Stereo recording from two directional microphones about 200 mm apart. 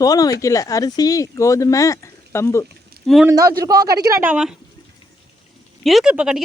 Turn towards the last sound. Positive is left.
turn(degrees=-5)  # may be behind; listen again after turning